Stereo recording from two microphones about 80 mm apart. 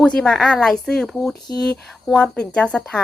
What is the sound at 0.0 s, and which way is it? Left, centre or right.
A woman's voice, centre.